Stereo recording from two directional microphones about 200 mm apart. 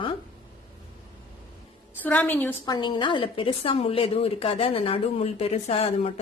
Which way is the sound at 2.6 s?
20° left (ahead or behind).